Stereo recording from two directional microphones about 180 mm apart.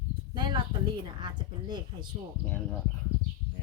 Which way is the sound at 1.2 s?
25° right (ahead or behind).